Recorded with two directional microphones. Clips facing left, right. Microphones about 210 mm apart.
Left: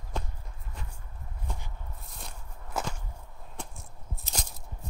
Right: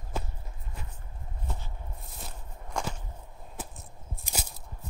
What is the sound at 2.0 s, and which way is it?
Walk, centre (ahead or behind).